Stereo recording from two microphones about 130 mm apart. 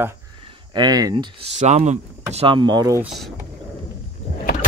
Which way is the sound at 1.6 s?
65° right (ahead or behind).